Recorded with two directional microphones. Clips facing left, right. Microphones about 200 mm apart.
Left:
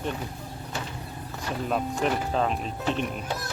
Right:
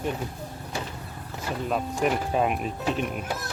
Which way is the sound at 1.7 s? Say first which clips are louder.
Right 1 dB; centre (ahead or behind).